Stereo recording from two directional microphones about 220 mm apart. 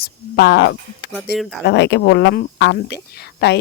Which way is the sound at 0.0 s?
45° left (ahead or behind).